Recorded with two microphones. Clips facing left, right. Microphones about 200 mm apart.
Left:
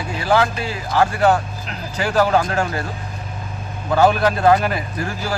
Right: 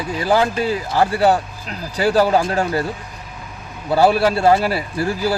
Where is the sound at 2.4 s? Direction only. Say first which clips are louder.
Right 2 dB; 30° right (ahead or behind).